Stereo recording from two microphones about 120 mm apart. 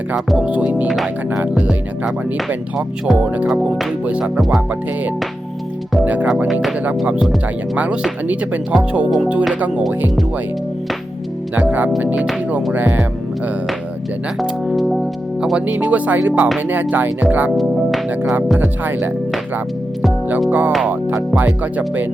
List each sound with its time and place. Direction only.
0.3 s speech: 10° right (ahead or behind)
6.2 s speech: 10° right (ahead or behind)
8.3 s speech: 15° right (ahead or behind)
11.5 s speech: 15° right (ahead or behind)
14.3 s speech: centre (ahead or behind)
17.6 s music: centre (ahead or behind)
18.6 s speech: 15° right (ahead or behind)
20.5 s speech: 15° right (ahead or behind)